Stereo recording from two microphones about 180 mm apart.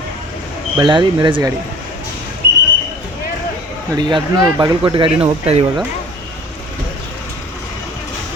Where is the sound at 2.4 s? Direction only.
60° right (ahead or behind).